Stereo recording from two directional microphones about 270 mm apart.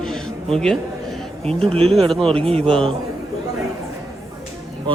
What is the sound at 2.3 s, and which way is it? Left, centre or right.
Speech, right.